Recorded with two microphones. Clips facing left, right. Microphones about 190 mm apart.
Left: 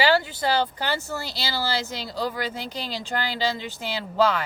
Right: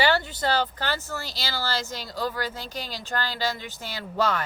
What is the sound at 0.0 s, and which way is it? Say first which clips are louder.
Speech: left 2 dB; 10° left (ahead or behind).